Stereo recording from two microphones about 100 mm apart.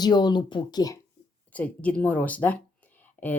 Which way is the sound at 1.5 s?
15° left (ahead or behind).